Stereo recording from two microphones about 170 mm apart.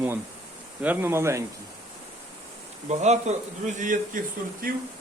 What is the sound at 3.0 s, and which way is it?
Speech, 40° right (ahead or behind).